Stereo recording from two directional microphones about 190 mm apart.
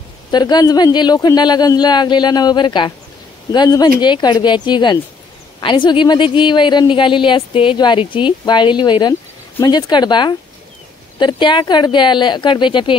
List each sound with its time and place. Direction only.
0.3 s a woman's voice: 20° left (ahead or behind)